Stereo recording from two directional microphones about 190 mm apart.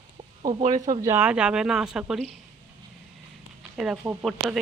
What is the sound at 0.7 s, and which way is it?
Speech, 20° right (ahead or behind).